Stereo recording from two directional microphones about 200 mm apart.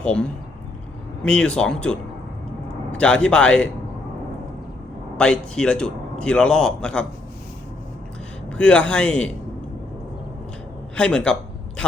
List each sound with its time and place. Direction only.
0.0 s a man's voice: 5° left (ahead or behind)
5.1 s a man's voice: 5° left (ahead or behind)
8.5 s a man's voice: 5° left (ahead or behind)
10.9 s a man's voice: 5° left (ahead or behind)